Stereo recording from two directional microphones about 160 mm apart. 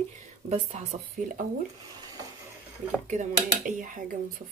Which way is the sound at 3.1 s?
50° right (ahead or behind).